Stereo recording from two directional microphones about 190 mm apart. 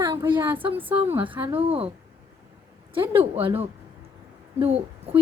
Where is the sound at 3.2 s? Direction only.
30° right (ahead or behind).